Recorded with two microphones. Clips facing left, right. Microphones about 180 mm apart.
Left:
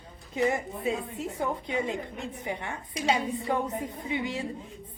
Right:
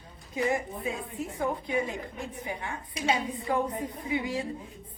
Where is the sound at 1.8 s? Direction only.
20° left (ahead or behind).